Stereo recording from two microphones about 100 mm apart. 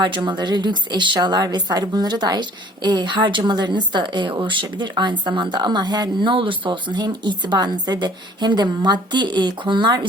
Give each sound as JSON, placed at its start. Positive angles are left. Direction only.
{"t": 0.0, "sound": "speech", "side_deg": -55}